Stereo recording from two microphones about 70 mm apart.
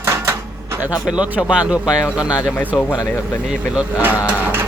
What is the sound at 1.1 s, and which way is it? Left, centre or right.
Speech, centre.